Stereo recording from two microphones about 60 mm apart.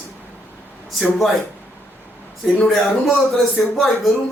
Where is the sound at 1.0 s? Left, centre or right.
Centre.